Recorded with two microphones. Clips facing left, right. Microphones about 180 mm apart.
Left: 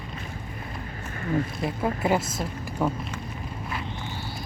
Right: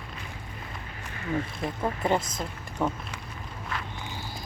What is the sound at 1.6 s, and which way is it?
A woman's voice, 5° left (ahead or behind).